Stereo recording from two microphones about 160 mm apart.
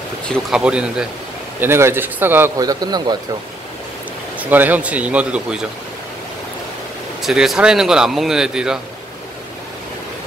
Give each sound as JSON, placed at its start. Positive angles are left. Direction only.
{"t": 0.3, "sound": "a man's voice", "side_deg": -5}
{"t": 4.4, "sound": "a man's voice", "side_deg": -10}
{"t": 7.2, "sound": "speech", "side_deg": 0}